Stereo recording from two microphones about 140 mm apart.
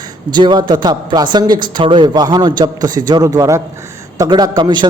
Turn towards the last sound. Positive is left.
turn(degrees=-30)  # may be behind; listen again after turning